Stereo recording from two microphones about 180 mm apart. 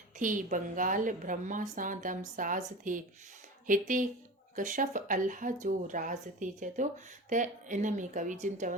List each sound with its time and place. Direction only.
0.2 s a woman's voice: 45° right (ahead or behind)